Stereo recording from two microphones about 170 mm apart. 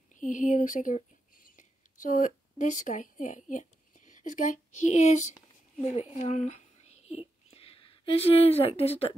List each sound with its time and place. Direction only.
0.1 s speech: 50° left (ahead or behind)
6.1 s whispering: 45° left (ahead or behind)